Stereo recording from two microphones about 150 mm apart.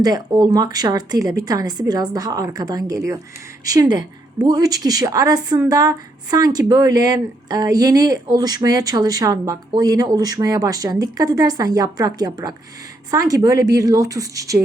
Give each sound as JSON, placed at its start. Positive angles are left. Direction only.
{"t": 0.0, "sound": "a woman's voice", "side_deg": -25}